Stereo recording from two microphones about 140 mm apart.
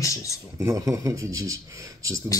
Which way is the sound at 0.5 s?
20° right (ahead or behind).